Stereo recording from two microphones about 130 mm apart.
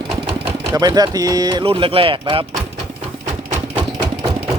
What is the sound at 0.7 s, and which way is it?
Speech, 30° right (ahead or behind).